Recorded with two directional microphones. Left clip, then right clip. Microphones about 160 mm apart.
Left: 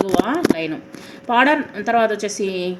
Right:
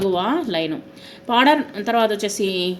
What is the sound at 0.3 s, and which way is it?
A woman's voice, 25° right (ahead or behind).